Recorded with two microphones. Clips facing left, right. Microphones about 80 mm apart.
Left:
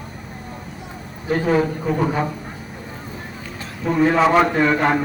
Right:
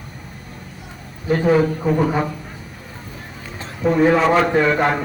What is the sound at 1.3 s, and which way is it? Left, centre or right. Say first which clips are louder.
Speech: right 2 dB; centre.